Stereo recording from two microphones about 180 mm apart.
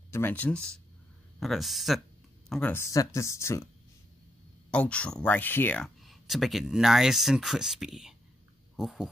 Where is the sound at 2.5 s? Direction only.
10° left (ahead or behind).